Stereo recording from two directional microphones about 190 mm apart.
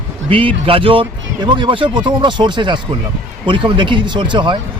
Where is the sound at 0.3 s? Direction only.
30° right (ahead or behind).